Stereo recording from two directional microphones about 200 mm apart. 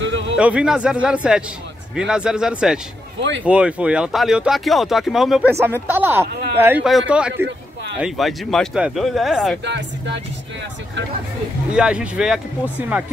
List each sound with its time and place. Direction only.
0.0 s music: 65° right (ahead or behind)
0.4 s speech: 5° right (ahead or behind)
9.7 s speech: 60° right (ahead or behind)
11.7 s speech: 5° right (ahead or behind)